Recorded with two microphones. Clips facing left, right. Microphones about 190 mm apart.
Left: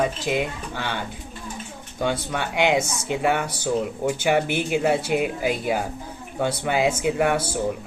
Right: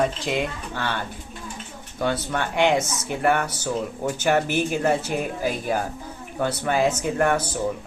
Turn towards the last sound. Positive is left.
turn(degrees=10)  # may be behind; listen again after turning